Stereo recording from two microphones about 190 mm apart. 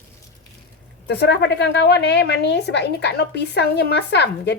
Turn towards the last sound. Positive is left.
turn(degrees=65)  # may be behind; listen again after turning